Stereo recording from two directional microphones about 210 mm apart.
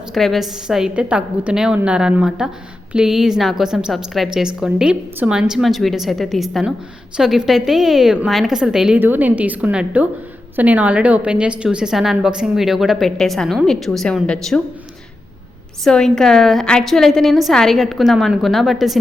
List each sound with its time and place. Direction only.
0.1 s a woman's voice: centre (ahead or behind)
15.8 s a woman's voice: 5° left (ahead or behind)